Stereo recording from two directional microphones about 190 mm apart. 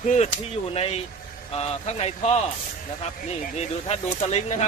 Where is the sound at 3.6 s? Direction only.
30° left (ahead or behind).